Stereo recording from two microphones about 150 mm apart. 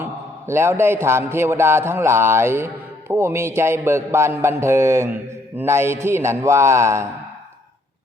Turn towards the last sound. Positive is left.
turn(degrees=-20)  # may be behind; listen again after turning